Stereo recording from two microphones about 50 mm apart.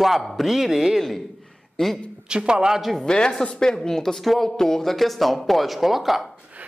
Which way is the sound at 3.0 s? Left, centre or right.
Centre.